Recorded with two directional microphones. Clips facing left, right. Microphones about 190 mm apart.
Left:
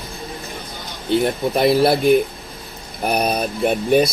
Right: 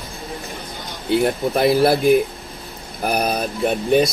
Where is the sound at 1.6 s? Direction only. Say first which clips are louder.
Even; centre (ahead or behind).